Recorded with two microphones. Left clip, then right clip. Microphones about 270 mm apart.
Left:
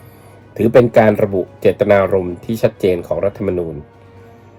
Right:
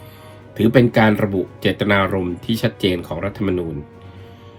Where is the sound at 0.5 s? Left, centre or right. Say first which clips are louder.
Left 5 dB; centre.